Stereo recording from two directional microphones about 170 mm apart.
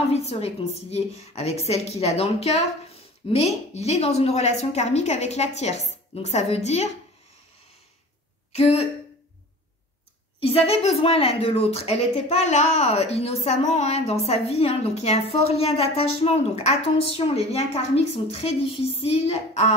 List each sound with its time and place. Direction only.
0.1 s a woman's voice: 40° left (ahead or behind)
10.4 s a woman's voice: 35° left (ahead or behind)